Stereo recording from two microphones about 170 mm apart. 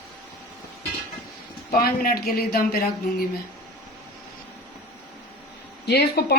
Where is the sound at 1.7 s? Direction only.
60° left (ahead or behind).